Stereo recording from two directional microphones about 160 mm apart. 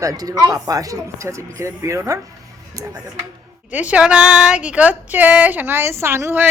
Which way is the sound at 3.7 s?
10° right (ahead or behind).